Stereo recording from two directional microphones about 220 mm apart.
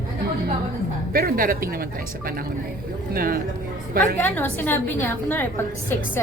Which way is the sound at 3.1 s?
40° right (ahead or behind).